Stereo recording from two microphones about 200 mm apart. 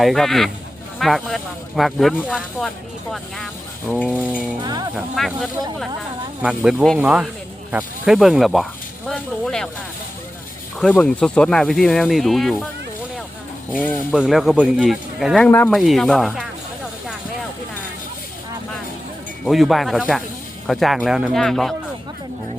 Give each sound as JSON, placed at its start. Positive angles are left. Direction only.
{"t": 0.0, "sound": "speech", "side_deg": 0}
{"t": 3.8, "sound": "a sound", "side_deg": 5}
{"t": 4.6, "sound": "speech", "side_deg": -20}
{"t": 4.9, "sound": "speech", "side_deg": 0}
{"t": 10.8, "sound": "speech", "side_deg": 5}
{"t": 14.1, "sound": "speech", "side_deg": 0}
{"t": 15.4, "sound": "a sound", "side_deg": 10}
{"t": 15.8, "sound": "speech", "side_deg": 0}
{"t": 19.5, "sound": "speech", "side_deg": 0}